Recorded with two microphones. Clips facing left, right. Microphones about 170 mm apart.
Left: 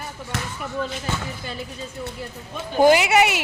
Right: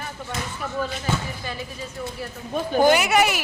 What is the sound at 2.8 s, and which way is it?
Speech, 25° left (ahead or behind).